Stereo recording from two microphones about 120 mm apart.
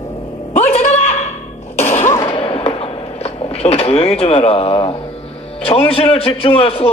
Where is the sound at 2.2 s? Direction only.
50° left (ahead or behind).